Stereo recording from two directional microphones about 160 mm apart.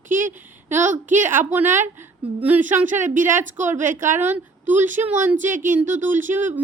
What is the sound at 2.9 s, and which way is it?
Speech, 55° right (ahead or behind).